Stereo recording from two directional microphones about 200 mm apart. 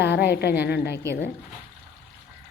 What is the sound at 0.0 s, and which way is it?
Speech, 55° left (ahead or behind).